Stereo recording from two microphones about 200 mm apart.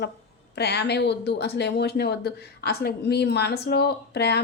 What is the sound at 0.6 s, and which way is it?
Speech, 55° left (ahead or behind).